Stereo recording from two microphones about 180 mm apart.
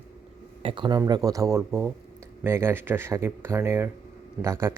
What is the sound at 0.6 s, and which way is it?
Speech, 30° right (ahead or behind).